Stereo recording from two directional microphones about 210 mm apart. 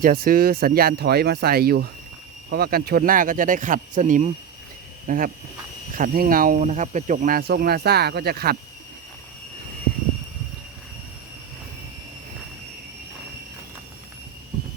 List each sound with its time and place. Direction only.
0.0 s speech: 45° right (ahead or behind)